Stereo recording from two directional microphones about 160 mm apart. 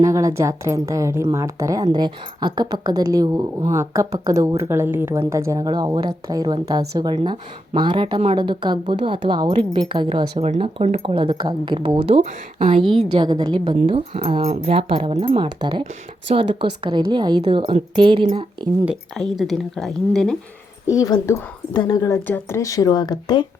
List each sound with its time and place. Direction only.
0.0 s a woman's voice: 20° right (ahead or behind)
19.1 s speech: centre (ahead or behind)
20.8 s a woman's voice: 20° left (ahead or behind)